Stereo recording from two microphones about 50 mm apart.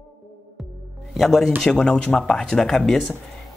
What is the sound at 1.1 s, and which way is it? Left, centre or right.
Speech, centre.